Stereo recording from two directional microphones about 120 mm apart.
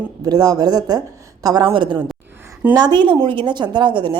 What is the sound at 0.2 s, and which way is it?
A woman's voice, 30° right (ahead or behind).